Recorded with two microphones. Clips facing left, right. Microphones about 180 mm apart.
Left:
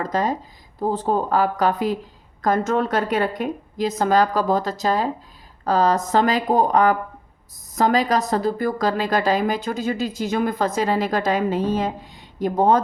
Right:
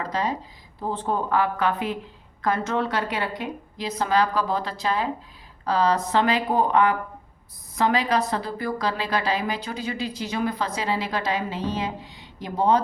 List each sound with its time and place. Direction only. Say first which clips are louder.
0.0 s speech: left 4 dB; 45° left (ahead or behind)